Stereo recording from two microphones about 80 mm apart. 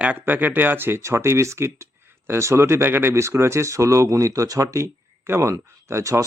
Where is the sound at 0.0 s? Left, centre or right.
Centre.